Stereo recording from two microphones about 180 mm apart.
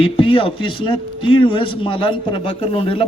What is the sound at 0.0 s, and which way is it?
A man's voice, 30° left (ahead or behind).